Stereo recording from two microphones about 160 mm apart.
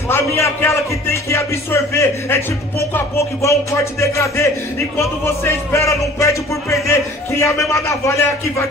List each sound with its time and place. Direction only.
0.1 s speech: 15° left (ahead or behind)
4.0 s speech: 20° left (ahead or behind)